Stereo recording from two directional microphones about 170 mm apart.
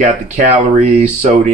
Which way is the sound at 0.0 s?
45° right (ahead or behind).